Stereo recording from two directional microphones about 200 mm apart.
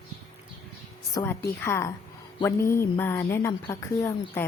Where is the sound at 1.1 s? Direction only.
15° left (ahead or behind).